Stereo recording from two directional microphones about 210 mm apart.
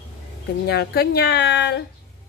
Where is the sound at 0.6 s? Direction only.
50° left (ahead or behind).